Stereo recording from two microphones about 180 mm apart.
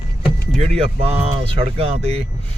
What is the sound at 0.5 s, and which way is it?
Speech, 35° right (ahead or behind).